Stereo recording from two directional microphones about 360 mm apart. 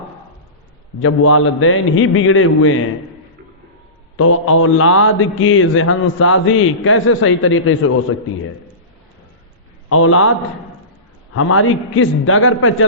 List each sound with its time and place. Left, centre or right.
1.0 s a man's voice: left
4.2 s a man's voice: left
9.9 s a man's voice: left
11.3 s a man's voice: left